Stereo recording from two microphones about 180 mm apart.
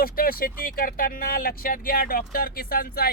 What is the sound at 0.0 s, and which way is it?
Speech, 55° left (ahead or behind).